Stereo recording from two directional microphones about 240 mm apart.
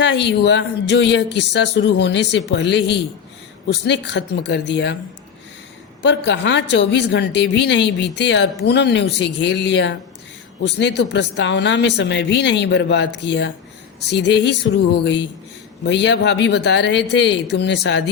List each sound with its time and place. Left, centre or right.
0.0 s a woman's voice: left
6.0 s a woman's voice: left